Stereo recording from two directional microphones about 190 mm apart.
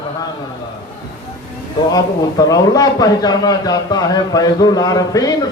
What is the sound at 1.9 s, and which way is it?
A man's voice, 20° left (ahead or behind).